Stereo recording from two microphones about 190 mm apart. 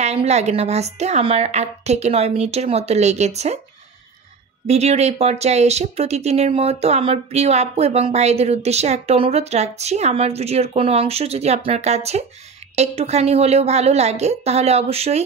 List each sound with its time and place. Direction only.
0.0 s speech: 35° right (ahead or behind)
4.6 s speech: 35° right (ahead or behind)